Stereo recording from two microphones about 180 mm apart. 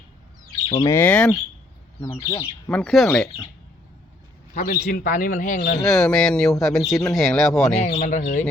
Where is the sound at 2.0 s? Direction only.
20° left (ahead or behind).